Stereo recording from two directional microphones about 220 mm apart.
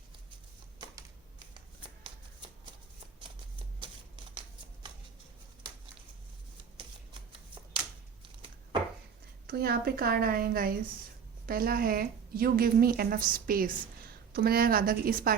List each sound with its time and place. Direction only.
0.8 s typing: 20° right (ahead or behind)
6.7 s shuffling cards: 20° right (ahead or behind)
9.5 s a woman's voice: 45° right (ahead or behind)